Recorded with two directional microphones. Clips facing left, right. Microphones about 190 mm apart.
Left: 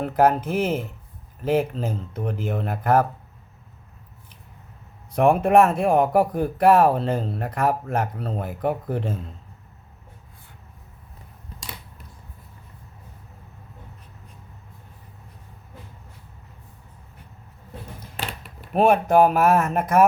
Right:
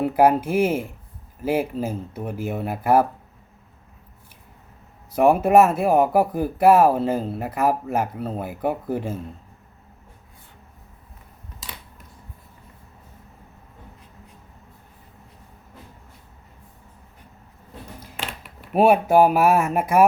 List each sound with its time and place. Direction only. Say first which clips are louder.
0.0 s speech: right 2 dB; 10° right (ahead or behind)
5.1 s speech: right 1 dB; 5° right (ahead or behind)
18.2 s a sound: left 1 dB; 35° left (ahead or behind)
18.7 s speech: right 1 dB; 10° right (ahead or behind)